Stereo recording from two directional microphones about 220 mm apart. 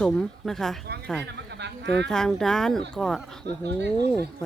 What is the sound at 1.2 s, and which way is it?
Speech, 50° right (ahead or behind).